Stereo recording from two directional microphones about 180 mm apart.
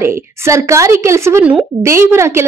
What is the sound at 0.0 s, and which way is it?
A woman's voice, 15° right (ahead or behind).